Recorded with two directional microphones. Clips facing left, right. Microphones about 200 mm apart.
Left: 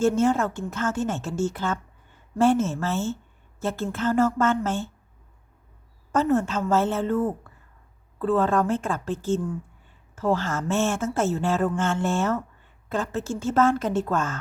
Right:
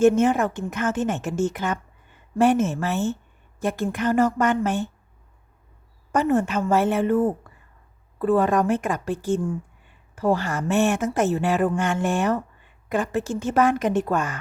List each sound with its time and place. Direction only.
0.0 s speech: 20° right (ahead or behind)
6.1 s speech: 15° right (ahead or behind)